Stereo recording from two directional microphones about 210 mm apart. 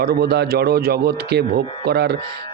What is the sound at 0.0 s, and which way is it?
A man's voice, 50° right (ahead or behind).